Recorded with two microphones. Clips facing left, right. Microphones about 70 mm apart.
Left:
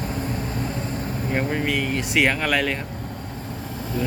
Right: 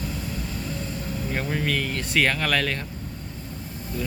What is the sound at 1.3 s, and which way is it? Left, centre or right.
Speech, centre.